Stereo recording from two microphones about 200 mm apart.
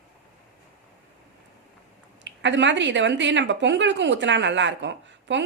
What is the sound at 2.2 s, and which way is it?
A woman's voice, 65° right (ahead or behind).